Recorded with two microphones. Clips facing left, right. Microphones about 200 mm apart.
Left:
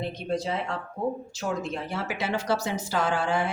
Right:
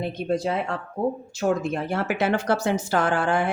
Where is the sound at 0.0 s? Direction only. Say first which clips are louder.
Right 4 dB; 55° right (ahead or behind).